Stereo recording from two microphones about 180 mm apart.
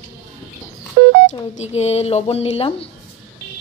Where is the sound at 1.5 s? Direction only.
35° left (ahead or behind).